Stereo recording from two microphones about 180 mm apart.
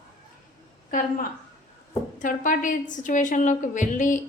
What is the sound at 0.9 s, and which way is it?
A woman's voice, 50° left (ahead or behind).